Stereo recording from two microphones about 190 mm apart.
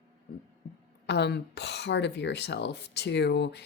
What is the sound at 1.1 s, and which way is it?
Speech, 60° left (ahead or behind).